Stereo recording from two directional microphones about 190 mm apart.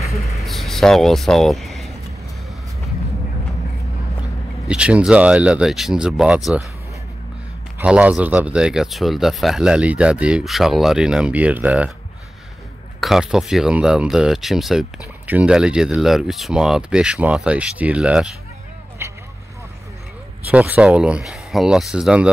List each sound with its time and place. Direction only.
0.0 s a sound: 15° left (ahead or behind)
0.4 s vehicle: centre (ahead or behind)
4.6 s speech: 5° right (ahead or behind)
7.8 s speech: 5° right (ahead or behind)
13.0 s speech: centre (ahead or behind)
19.0 s vehicle: 15° right (ahead or behind)
20.4 s speech: 10° right (ahead or behind)